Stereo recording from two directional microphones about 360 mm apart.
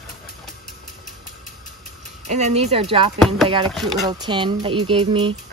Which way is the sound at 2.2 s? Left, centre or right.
Centre.